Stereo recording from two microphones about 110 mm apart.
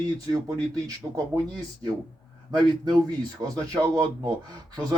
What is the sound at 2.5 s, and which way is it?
Speech, 40° right (ahead or behind).